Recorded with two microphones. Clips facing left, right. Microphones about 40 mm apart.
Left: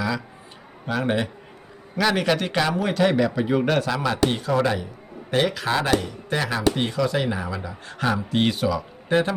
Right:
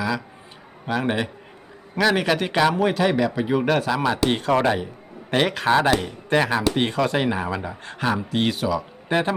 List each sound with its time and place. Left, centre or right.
1.0 s a man's voice: centre
4.4 s speech: right
4.6 s a man's voice: right
7.9 s speech: centre
8.3 s a man's voice: centre
9.0 s speech: right